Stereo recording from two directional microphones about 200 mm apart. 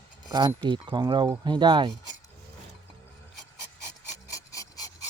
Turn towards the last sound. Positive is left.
turn(degrees=15)  # may be behind; listen again after turning